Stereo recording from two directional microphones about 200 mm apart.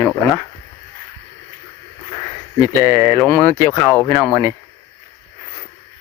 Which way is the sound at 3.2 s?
5° left (ahead or behind).